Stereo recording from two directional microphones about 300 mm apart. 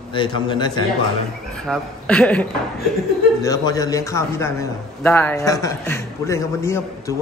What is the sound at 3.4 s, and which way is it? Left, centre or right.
A man's voice, centre.